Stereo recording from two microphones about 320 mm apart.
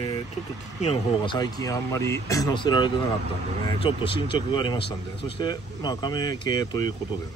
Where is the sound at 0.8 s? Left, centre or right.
Centre.